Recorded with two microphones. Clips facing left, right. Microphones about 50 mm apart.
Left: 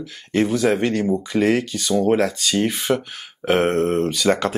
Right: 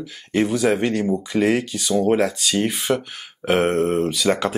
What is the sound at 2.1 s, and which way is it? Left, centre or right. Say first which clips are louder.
Speech: even; right.